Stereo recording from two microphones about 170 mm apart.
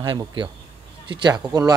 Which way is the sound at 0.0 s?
25° right (ahead or behind).